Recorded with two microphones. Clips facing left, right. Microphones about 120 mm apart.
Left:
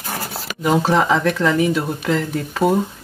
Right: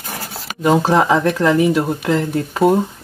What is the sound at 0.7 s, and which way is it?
Speech, 25° right (ahead or behind).